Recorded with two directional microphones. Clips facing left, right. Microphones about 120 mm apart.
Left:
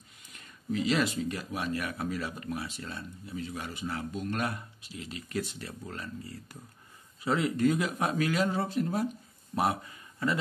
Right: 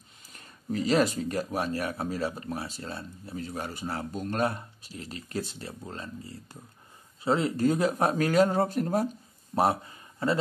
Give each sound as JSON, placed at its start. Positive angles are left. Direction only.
{"t": 0.3, "sound": "speech", "side_deg": -35}
{"t": 9.6, "sound": "speech", "side_deg": -30}